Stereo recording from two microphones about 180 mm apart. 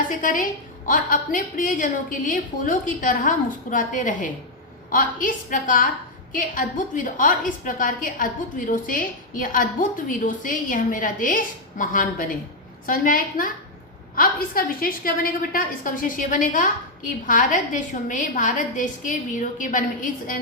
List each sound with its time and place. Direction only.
0.1 s a woman's voice: 45° left (ahead or behind)